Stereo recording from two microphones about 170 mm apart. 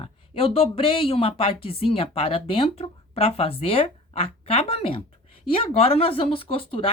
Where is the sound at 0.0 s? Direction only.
35° left (ahead or behind).